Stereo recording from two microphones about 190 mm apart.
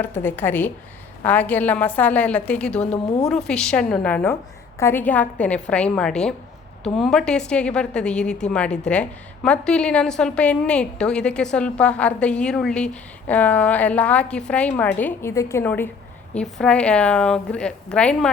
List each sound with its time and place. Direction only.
0.0 s a woman's voice: 10° left (ahead or behind)